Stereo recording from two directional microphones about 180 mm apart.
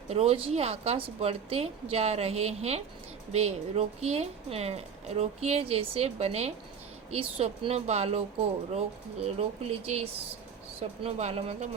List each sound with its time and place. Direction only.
0.1 s a woman's voice: 35° right (ahead or behind)
9.2 s a woman's voice: 35° right (ahead or behind)